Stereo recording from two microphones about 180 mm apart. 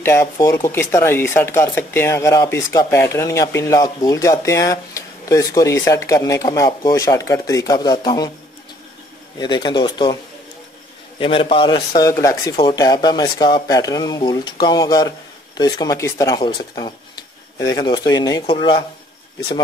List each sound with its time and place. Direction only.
0.0 s speech: 15° left (ahead or behind)
9.4 s speech: 25° left (ahead or behind)
11.1 s speech: 30° left (ahead or behind)